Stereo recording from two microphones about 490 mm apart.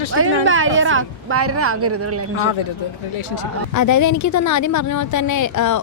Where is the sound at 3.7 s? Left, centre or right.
Left.